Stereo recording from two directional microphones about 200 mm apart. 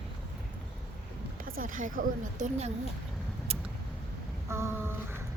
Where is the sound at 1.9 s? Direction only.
40° right (ahead or behind).